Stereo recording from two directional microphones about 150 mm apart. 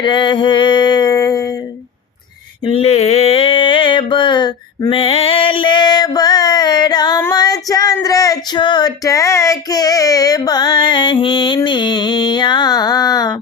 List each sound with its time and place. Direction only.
0.0 s a sound: 30° left (ahead or behind)
2.6 s mantra: 40° left (ahead or behind)
7.3 s female singing: 25° left (ahead or behind)
7.9 s child singing: 20° left (ahead or behind)